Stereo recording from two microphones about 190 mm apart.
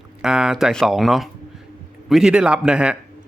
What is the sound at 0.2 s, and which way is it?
Speech, 5° right (ahead or behind).